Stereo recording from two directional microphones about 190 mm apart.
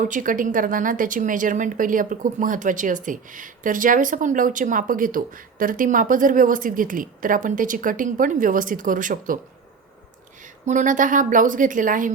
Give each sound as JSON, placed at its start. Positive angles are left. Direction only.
{"t": 0.0, "sound": "speech", "side_deg": -45}
{"t": 10.7, "sound": "speech", "side_deg": -40}